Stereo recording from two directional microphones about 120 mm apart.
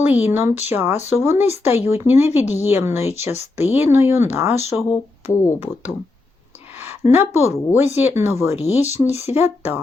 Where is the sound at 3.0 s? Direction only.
65° left (ahead or behind).